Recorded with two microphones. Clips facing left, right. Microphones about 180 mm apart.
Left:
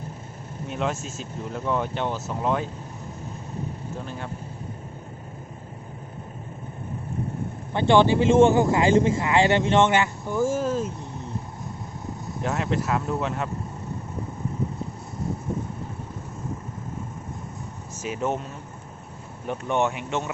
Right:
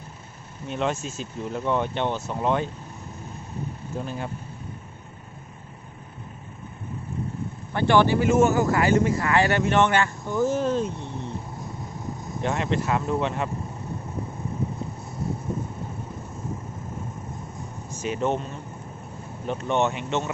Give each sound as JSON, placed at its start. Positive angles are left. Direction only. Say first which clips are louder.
{"t": 0.7, "sound": "speech", "louder": "right 2 dB", "side_deg": 5}
{"t": 7.7, "sound": "speech", "louder": "left 1 dB", "side_deg": 20}
{"t": 12.4, "sound": "speech", "louder": "right 1 dB", "side_deg": 5}
{"t": 18.0, "sound": "speech", "louder": "right 2 dB", "side_deg": 5}
{"t": 19.5, "sound": "speech", "louder": "right 1 dB", "side_deg": 10}